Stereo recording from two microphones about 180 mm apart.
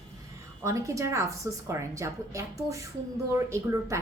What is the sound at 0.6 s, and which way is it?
A woman's voice, 15° right (ahead or behind).